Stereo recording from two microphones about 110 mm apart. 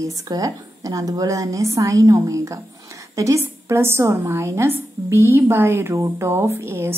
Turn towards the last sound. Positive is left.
turn(degrees=-25)  # may be behind; listen again after turning